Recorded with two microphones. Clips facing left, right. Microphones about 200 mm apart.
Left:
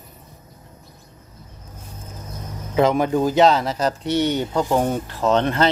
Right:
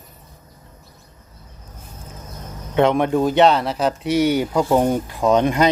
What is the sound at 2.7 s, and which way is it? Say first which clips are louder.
Speech: right 1 dB; centre (ahead or behind).